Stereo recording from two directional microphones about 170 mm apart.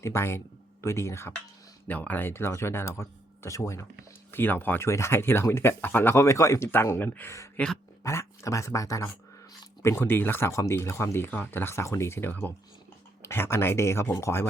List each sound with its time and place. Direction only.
0.0 s speech: 15° left (ahead or behind)